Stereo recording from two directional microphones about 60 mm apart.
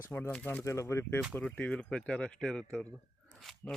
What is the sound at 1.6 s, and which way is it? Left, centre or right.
Speech, left.